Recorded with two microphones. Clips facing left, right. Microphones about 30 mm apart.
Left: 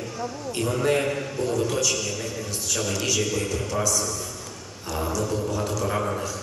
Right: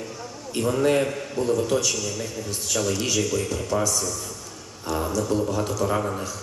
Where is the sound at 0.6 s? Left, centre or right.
Centre.